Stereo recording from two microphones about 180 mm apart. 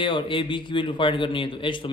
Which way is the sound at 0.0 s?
25° left (ahead or behind).